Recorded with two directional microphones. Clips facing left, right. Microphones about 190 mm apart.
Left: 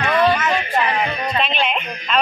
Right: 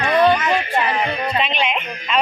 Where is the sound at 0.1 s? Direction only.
15° right (ahead or behind).